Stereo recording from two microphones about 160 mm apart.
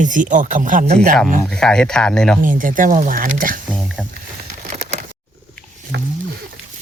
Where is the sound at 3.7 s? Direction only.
Centre (ahead or behind).